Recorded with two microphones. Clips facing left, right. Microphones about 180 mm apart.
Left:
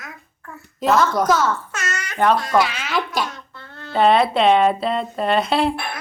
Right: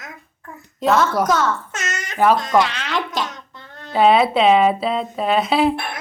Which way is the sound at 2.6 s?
5° left (ahead or behind).